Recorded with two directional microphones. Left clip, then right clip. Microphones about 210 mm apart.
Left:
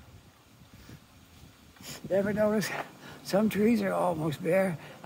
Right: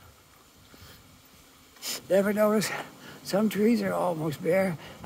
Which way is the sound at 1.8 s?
30° right (ahead or behind).